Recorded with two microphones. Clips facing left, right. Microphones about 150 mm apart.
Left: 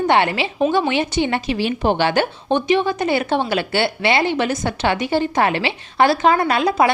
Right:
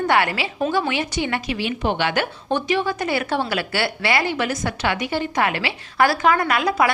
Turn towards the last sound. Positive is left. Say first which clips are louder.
# left 3 dB
turn(degrees=25)  # may be behind; listen again after turning